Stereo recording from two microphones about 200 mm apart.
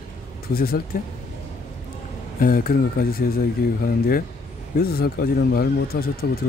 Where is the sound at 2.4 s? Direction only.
45° left (ahead or behind).